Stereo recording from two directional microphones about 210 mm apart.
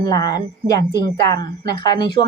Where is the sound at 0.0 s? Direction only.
15° left (ahead or behind).